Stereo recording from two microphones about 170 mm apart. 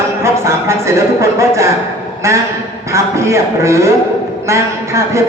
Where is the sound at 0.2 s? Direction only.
15° right (ahead or behind).